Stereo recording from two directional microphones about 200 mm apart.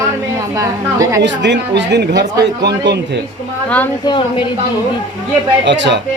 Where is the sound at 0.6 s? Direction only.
15° right (ahead or behind).